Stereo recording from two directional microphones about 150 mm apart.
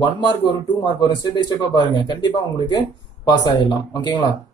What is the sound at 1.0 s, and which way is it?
Speech, 30° left (ahead or behind).